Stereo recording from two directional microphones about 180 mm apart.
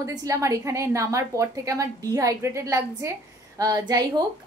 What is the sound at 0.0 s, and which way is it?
A woman's voice, 20° right (ahead or behind).